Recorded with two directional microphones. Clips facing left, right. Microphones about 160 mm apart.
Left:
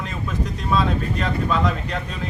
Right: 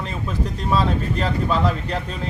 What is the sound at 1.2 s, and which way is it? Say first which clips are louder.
Speech: right 1 dB; 30° right (ahead or behind).